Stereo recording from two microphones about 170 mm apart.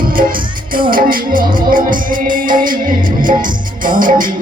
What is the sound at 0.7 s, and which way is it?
Music, 55° right (ahead or behind).